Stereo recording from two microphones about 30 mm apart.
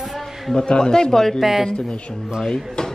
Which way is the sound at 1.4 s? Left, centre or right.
Centre.